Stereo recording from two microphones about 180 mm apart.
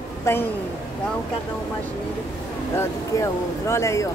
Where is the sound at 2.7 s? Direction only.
15° left (ahead or behind).